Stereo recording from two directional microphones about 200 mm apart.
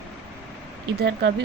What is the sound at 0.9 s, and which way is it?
Speech, 55° right (ahead or behind).